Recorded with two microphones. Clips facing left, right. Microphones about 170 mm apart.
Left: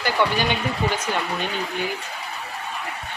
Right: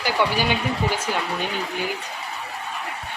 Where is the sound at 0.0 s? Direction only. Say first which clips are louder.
Even; 10° right (ahead or behind).